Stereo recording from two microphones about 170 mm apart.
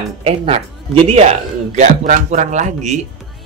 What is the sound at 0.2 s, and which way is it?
Speech, 35° right (ahead or behind).